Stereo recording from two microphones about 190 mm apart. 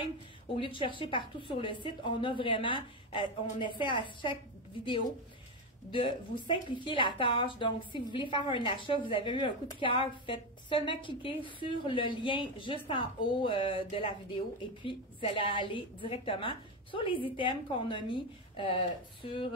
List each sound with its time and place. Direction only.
0.6 s a woman's voice: 25° left (ahead or behind)
5.9 s a woman's voice: 25° left (ahead or behind)